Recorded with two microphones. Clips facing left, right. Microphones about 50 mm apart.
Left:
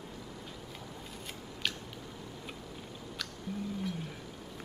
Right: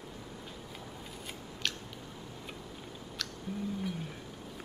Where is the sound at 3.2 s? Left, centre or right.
Centre.